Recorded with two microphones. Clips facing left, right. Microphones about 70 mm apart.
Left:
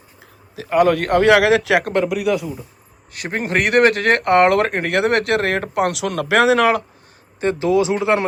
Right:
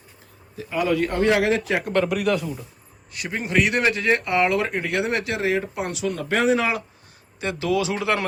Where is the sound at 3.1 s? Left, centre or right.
Left.